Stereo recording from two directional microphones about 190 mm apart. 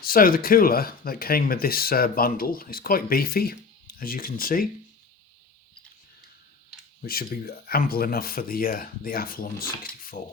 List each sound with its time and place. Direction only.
0.0 s speech: 50° left (ahead or behind)
7.0 s speech: 50° left (ahead or behind)